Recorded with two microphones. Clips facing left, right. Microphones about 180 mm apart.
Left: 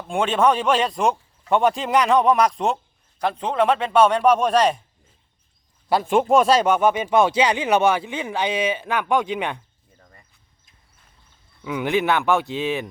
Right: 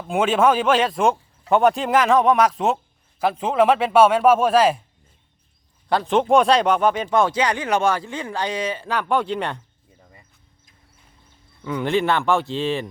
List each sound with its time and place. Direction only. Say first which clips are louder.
0.1 s a man's voice: right 1 dB; 5° right (ahead or behind)
5.9 s speech: even; 10° left (ahead or behind)
10.0 s a sound: right 1 dB; 10° right (ahead or behind)
11.6 s speech: right 1 dB; 5° left (ahead or behind)